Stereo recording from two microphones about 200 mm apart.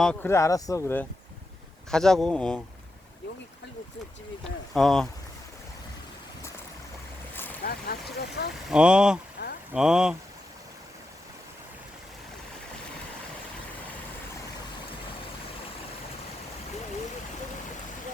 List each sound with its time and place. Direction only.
0.0 s speech: 5° left (ahead or behind)
1.9 s speech: centre (ahead or behind)
4.7 s speech: centre (ahead or behind)
7.6 s vehicle: 50° left (ahead or behind)
8.7 s speech: 5° right (ahead or behind)
9.4 s a sound: 50° left (ahead or behind)
9.7 s speech: 5° right (ahead or behind)